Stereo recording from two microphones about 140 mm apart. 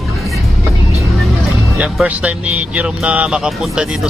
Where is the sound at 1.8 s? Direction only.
5° right (ahead or behind).